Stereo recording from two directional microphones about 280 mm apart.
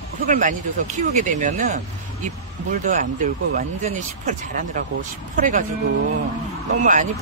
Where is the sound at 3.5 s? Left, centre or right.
Right.